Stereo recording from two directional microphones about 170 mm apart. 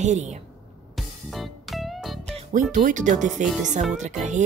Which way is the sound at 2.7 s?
50° right (ahead or behind).